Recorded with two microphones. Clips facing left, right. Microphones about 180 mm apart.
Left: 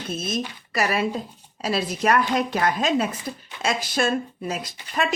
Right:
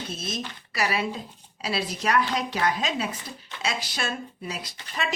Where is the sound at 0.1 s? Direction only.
50° left (ahead or behind).